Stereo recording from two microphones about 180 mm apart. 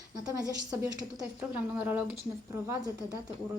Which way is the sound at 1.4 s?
10° right (ahead or behind).